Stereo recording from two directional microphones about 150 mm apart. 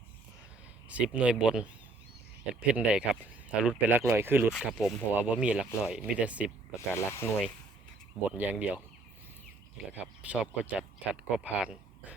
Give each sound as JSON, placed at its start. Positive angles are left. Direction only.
{"t": 0.9, "sound": "speech", "side_deg": -10}
{"t": 4.5, "sound": "speech", "side_deg": 0}
{"t": 6.9, "sound": "speech", "side_deg": 15}
{"t": 8.3, "sound": "speech", "side_deg": -10}
{"t": 10.2, "sound": "speech", "side_deg": -10}